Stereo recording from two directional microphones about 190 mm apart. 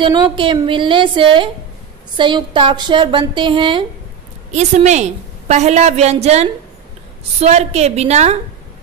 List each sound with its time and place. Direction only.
0.0 s a woman's voice: 25° right (ahead or behind)
4.5 s a woman's voice: 35° right (ahead or behind)